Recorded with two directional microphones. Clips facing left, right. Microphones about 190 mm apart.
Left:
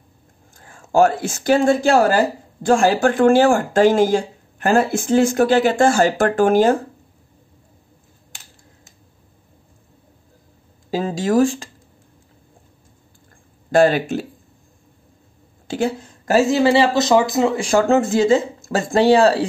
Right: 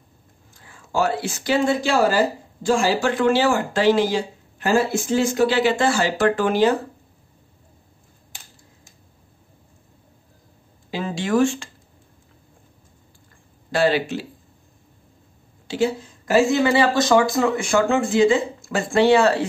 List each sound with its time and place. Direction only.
0.6 s speech: 45° left (ahead or behind)
10.9 s speech: 40° left (ahead or behind)
13.7 s speech: 45° left (ahead or behind)
15.7 s speech: 45° left (ahead or behind)
16.6 s speech: 30° left (ahead or behind)
17.6 s speech: 35° left (ahead or behind)